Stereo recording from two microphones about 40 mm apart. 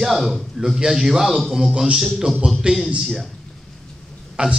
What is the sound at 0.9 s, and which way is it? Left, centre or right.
A man's voice, centre.